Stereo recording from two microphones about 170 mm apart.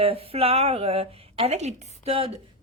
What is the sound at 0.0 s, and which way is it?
Speech, 35° right (ahead or behind).